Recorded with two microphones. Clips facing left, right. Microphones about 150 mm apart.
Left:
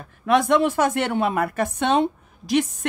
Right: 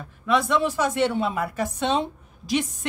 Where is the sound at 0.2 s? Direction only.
55° left (ahead or behind).